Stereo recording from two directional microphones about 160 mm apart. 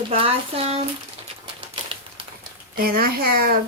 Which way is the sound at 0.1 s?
35° right (ahead or behind).